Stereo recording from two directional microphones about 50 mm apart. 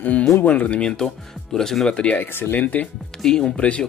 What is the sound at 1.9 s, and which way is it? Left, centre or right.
Speech, left.